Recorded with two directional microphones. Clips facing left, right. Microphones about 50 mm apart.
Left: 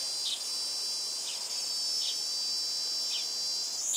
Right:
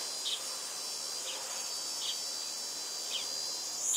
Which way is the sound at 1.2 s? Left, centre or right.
Right.